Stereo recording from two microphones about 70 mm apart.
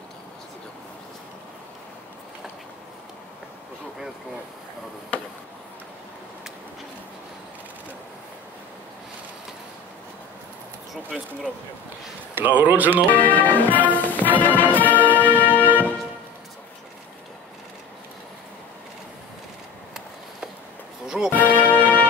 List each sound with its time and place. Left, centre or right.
12.4 s speech: right
13.1 s music: left
21.3 s music: left